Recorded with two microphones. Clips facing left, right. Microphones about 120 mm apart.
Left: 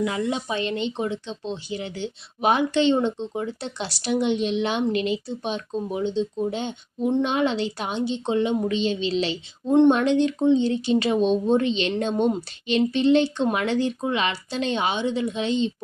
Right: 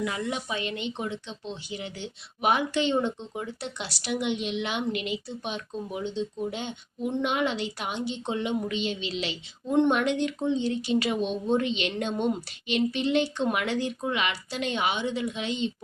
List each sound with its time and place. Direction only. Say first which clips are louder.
0.0 s speech: left 5 dB; 25° left (ahead or behind)